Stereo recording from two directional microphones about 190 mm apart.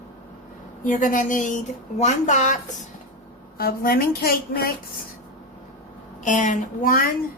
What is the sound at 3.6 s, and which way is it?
A woman's voice, 50° left (ahead or behind).